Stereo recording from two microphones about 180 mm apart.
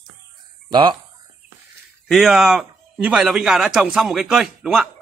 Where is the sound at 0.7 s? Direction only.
25° right (ahead or behind).